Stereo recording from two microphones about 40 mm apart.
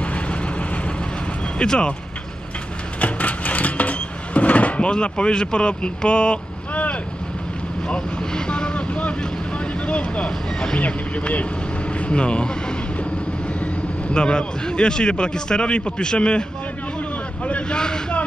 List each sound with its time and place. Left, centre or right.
0.0 s vehicle: left
1.6 s a man's voice: left
3.0 s a sound: left
7.9 s vehicle: left
9.8 s vehicle: left
10.8 s a man's voice: left
14.0 s a man's voice: left
17.5 s speech: left
17.7 s a man's voice: centre